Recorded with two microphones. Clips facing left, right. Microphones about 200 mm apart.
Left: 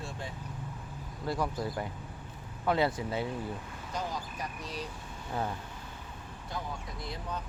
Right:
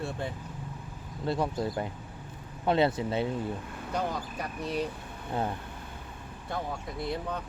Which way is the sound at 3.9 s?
60° right (ahead or behind).